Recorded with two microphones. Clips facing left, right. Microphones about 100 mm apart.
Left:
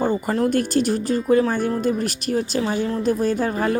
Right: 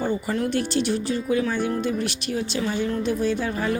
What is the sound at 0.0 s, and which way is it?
Speech, 45° left (ahead or behind).